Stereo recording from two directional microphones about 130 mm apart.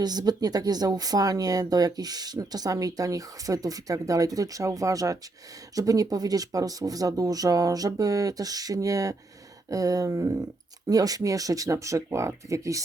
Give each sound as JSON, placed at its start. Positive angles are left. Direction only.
{"t": 0.0, "sound": "speech", "side_deg": -30}